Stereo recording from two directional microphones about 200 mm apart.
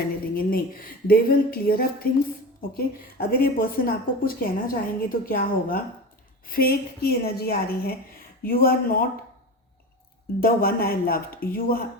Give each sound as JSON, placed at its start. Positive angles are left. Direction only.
{"t": 0.3, "sound": "a woman's voice", "side_deg": 45}
{"t": 10.4, "sound": "a woman's voice", "side_deg": 45}